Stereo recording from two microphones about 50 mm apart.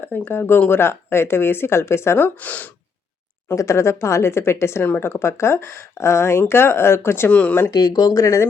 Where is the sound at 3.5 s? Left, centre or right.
Left.